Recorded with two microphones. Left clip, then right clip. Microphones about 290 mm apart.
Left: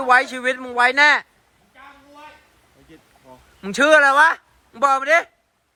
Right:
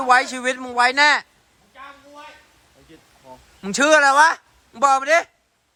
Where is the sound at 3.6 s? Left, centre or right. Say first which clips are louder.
Left 1 dB; centre.